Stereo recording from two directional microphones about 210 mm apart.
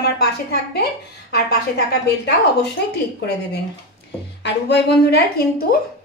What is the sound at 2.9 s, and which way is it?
A woman's voice, 55° left (ahead or behind).